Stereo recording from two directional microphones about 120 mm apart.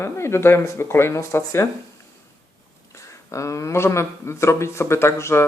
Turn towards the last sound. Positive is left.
turn(degrees=20)  # may be behind; listen again after turning